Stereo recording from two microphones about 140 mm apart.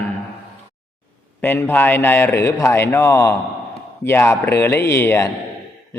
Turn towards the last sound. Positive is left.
turn(degrees=15)  # may be behind; listen again after turning